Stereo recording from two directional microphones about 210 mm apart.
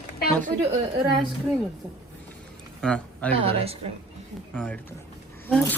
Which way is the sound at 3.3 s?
30° right (ahead or behind).